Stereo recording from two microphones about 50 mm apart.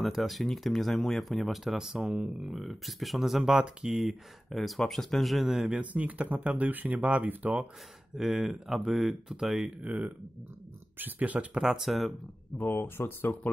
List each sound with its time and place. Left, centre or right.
0.0 s speech: centre
2.0 s speech: right
2.5 s speech: centre
5.7 s speech: right
7.0 s speech: right
7.2 s speech: right
8.2 s speech: centre
11.0 s speech: right
11.6 s speech: centre
12.5 s speech: left